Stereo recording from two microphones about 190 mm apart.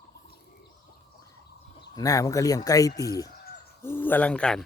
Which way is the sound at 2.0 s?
20° left (ahead or behind).